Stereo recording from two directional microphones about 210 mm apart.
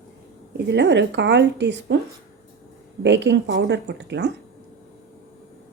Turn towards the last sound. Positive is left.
turn(degrees=-55)  # may be behind; listen again after turning